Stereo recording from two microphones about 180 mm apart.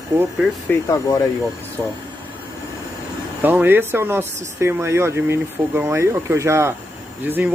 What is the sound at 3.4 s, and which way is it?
Speech, 10° right (ahead or behind).